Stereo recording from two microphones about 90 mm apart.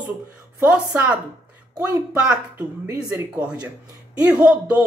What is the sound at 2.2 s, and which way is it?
Speech, 10° right (ahead or behind).